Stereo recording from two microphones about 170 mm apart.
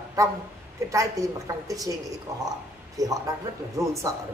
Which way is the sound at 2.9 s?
20° right (ahead or behind).